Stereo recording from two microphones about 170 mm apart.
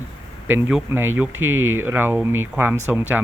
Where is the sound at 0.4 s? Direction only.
10° right (ahead or behind).